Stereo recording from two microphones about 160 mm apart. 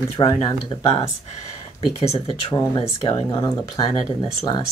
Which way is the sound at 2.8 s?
40° left (ahead or behind).